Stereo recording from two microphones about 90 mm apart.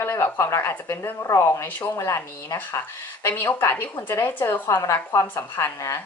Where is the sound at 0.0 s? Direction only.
30° left (ahead or behind).